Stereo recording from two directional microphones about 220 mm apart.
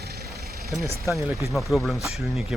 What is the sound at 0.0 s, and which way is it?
Vehicle, 50° right (ahead or behind).